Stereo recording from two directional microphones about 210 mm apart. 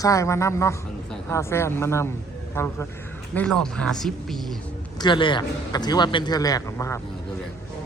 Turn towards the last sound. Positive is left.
turn(degrees=15)  # may be behind; listen again after turning